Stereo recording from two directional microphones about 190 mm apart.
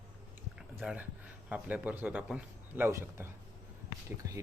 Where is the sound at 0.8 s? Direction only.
5° right (ahead or behind).